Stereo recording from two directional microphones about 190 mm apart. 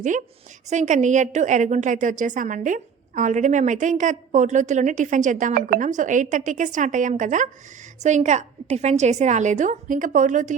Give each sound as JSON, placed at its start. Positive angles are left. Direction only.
{"t": 0.7, "sound": "a woman's voice", "side_deg": -40}